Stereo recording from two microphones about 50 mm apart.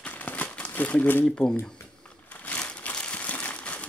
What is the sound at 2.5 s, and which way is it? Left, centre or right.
Crumpling, left.